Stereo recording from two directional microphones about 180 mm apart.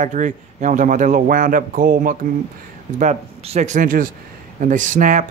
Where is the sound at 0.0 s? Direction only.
45° right (ahead or behind).